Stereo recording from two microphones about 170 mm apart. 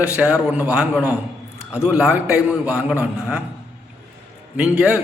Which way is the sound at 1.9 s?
10° right (ahead or behind).